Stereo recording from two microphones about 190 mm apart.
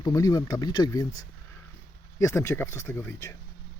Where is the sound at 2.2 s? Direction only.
15° left (ahead or behind).